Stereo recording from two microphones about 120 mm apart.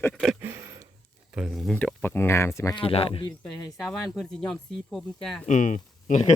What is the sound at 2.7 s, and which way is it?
Speech, 55° left (ahead or behind).